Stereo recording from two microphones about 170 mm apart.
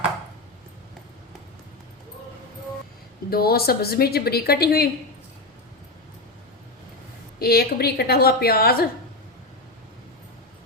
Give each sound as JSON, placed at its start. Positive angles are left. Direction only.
{"t": 3.2, "sound": "a woman's voice", "side_deg": 65}
{"t": 7.3, "sound": "a woman's voice", "side_deg": 65}